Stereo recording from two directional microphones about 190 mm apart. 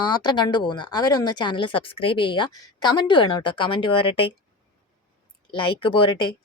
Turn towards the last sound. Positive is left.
turn(degrees=25)  # may be behind; listen again after turning